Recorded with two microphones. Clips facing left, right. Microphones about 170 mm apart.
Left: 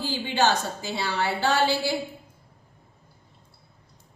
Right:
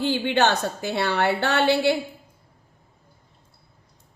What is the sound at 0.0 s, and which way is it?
A woman's voice, 60° right (ahead or behind).